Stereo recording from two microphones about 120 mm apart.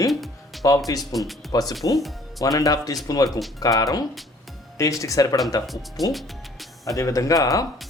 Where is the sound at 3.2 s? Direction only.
Centre (ahead or behind).